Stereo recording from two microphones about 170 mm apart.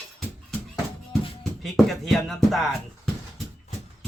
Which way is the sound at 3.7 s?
40° left (ahead or behind).